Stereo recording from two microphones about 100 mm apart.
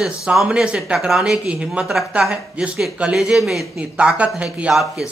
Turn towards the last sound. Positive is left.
turn(degrees=-5)  # may be behind; listen again after turning